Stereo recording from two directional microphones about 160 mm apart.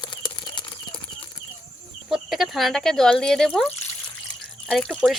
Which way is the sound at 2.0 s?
Centre (ahead or behind).